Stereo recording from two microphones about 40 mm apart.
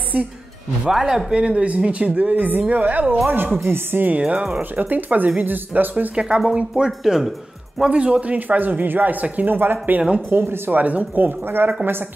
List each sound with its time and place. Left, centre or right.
0.8 s speech: centre
1.3 s speech: right
3.6 s a woman's voice: right
4.2 s speech: right
4.6 s speech: right
6.1 s speech: right
6.8 s speech: centre
7.9 s speech: right
8.4 s speech: right
9.5 s speech: right
10.8 s speech: right